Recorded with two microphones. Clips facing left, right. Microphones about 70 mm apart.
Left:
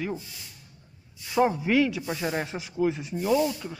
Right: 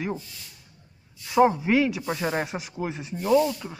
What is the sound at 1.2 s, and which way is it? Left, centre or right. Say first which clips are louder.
Speech: right 4 dB; centre.